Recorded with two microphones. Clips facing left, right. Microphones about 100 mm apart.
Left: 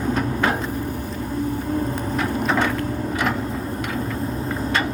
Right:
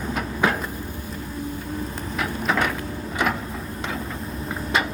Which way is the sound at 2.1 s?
5° right (ahead or behind).